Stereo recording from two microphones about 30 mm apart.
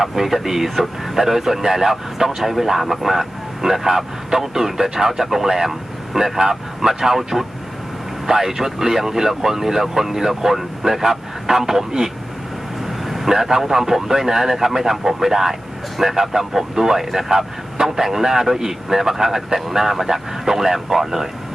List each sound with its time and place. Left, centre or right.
0.0 s speech: centre